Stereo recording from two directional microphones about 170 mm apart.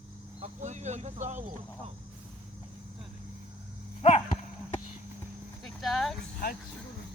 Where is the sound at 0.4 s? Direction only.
45° right (ahead or behind).